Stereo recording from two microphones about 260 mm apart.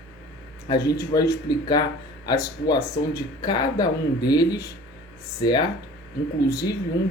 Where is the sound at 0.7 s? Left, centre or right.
Centre.